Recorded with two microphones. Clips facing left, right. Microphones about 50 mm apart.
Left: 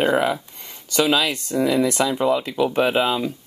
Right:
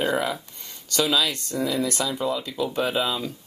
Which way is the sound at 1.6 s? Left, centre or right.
Left.